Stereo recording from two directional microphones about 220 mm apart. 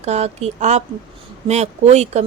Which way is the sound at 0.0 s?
30° right (ahead or behind).